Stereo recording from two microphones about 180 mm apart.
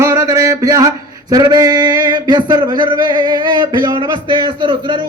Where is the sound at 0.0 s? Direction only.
20° right (ahead or behind).